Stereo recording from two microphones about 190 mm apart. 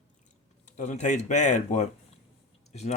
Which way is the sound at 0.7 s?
40° left (ahead or behind).